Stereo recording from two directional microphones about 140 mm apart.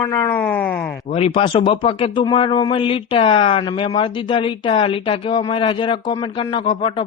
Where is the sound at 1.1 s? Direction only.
45° left (ahead or behind).